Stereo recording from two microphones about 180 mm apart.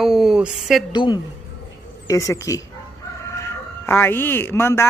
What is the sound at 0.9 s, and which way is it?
Speech, 25° left (ahead or behind).